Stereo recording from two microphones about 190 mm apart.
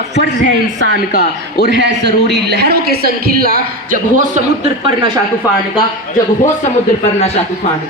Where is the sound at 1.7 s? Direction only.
65° right (ahead or behind); by 4.0 s 50° right (ahead or behind).